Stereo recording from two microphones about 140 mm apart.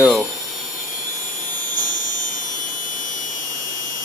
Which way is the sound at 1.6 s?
70° left (ahead or behind).